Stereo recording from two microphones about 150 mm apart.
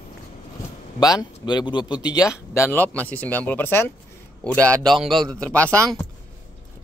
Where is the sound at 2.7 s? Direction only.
10° left (ahead or behind).